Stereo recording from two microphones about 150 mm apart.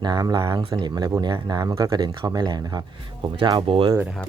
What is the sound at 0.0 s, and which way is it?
Speech, 30° right (ahead or behind).